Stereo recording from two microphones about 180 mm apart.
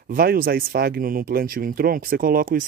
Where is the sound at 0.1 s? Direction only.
55° right (ahead or behind).